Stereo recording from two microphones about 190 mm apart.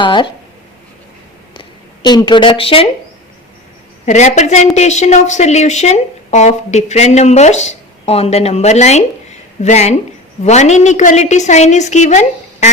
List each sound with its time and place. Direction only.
0.0 s speech: 25° left (ahead or behind)
1.5 s a woman's voice: 25° left (ahead or behind)
4.0 s speech: 40° left (ahead or behind)